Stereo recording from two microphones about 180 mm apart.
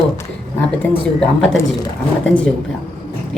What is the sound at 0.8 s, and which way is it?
Speech, 5° left (ahead or behind).